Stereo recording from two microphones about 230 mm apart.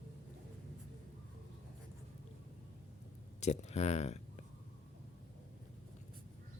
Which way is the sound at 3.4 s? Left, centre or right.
Left.